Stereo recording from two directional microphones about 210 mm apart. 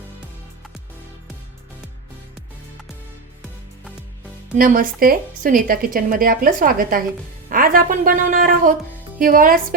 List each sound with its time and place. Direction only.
4.5 s a woman's voice: 40° right (ahead or behind)